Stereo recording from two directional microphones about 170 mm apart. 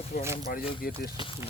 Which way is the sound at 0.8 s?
60° left (ahead or behind).